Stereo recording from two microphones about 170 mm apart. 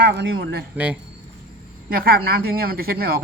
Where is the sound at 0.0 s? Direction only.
75° right (ahead or behind).